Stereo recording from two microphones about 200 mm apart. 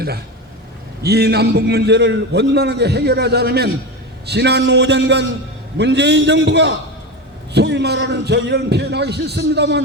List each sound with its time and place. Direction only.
1.0 s a man's voice: 55° right (ahead or behind)